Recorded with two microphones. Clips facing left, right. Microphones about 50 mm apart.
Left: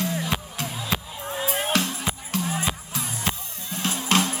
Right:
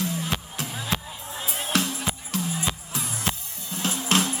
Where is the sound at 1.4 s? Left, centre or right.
Left.